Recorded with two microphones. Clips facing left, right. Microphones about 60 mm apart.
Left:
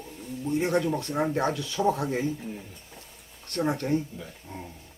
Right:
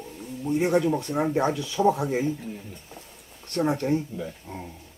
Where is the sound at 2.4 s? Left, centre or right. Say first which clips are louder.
Right 1 dB; centre.